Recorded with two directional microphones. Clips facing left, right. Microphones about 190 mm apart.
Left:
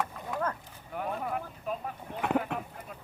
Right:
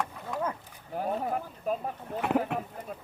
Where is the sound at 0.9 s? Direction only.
35° right (ahead or behind).